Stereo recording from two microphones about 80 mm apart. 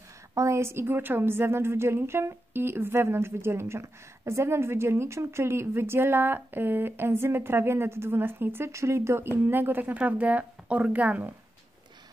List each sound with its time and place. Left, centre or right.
0.3 s a woman's voice: right; by 11.2 s centre